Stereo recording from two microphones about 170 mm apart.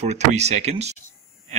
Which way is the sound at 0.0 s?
40° right (ahead or behind).